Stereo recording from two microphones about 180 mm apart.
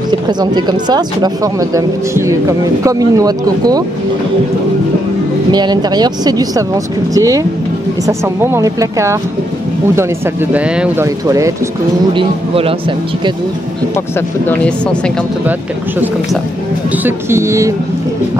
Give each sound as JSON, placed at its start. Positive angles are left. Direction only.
{"t": 0.1, "sound": "speech", "side_deg": -25}
{"t": 5.5, "sound": "speech", "side_deg": -25}
{"t": 10.5, "sound": "speech", "side_deg": -10}
{"t": 12.1, "sound": "speech", "side_deg": -30}
{"t": 14.5, "sound": "a woman's voice", "side_deg": 5}
{"t": 17.0, "sound": "speech", "side_deg": -15}